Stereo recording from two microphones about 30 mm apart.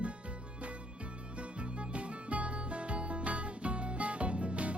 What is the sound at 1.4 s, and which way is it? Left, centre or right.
Music, right.